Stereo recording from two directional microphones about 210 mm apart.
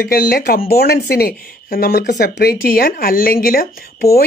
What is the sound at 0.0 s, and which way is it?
Speech, 45° left (ahead or behind).